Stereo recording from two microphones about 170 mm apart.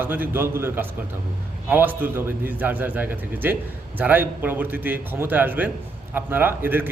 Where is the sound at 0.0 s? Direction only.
10° right (ahead or behind).